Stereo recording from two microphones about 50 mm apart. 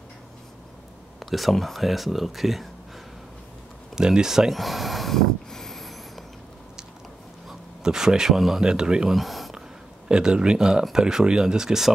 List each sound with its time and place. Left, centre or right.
1.2 s speech: centre
3.9 s a sound: centre
7.8 s speech: centre
8.6 s speech: centre
9.1 s a sound: centre
10.0 s speech: centre